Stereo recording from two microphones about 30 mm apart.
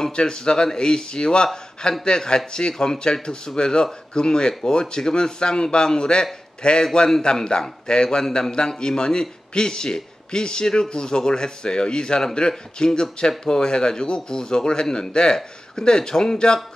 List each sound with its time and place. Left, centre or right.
0.1 s a man's voice: left